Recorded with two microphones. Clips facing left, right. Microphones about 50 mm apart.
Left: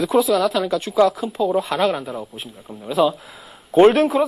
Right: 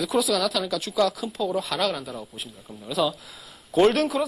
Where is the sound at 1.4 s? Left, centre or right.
Centre.